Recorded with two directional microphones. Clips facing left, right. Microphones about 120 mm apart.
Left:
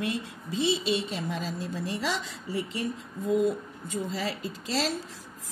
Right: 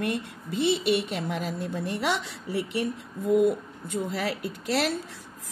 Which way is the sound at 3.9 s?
65° right (ahead or behind).